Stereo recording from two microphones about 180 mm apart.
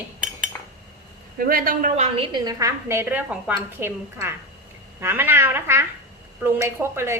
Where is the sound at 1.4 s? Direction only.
55° right (ahead or behind).